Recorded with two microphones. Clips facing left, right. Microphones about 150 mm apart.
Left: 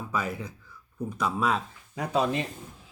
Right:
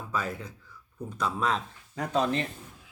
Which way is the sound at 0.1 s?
15° left (ahead or behind).